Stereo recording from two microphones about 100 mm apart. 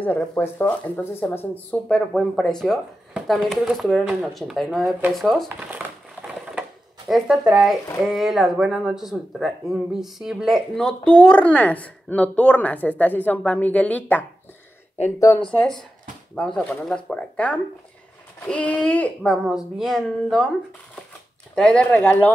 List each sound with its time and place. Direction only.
0.4 s speech: 15° left (ahead or behind)
2.0 s speech: 5° left (ahead or behind)
5.6 s speech: 15° right (ahead or behind)
7.1 s speech: centre (ahead or behind); by 14.2 s 15° left (ahead or behind)
15.1 s speech: 30° left (ahead or behind)
15.4 s speech: 10° left (ahead or behind)
19.3 s speech: centre (ahead or behind); by 22.3 s 20° left (ahead or behind)